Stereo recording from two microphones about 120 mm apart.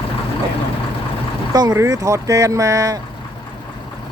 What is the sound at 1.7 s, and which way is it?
Speech, 30° right (ahead or behind).